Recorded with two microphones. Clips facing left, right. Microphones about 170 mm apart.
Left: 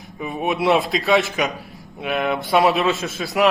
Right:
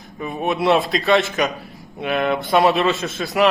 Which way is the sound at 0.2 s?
5° left (ahead or behind).